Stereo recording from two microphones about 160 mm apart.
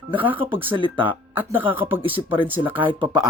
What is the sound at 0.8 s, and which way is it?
Speech, 30° right (ahead or behind).